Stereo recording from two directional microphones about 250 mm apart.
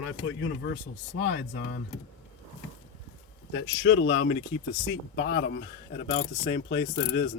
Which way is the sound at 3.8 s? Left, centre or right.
Left.